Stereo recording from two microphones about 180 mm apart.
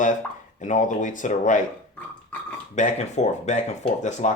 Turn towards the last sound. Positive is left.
turn(degrees=40)  # may be behind; listen again after turning